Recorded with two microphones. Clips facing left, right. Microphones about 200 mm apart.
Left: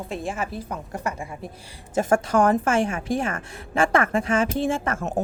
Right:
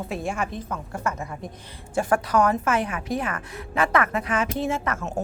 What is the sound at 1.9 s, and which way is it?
A woman's voice, 25° left (ahead or behind).